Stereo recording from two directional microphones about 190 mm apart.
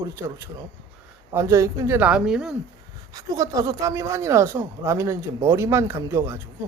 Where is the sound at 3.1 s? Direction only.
20° right (ahead or behind).